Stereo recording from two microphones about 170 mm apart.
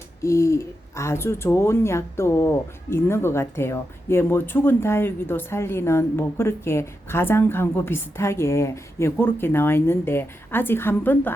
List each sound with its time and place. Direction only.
0.2 s speech: 15° left (ahead or behind)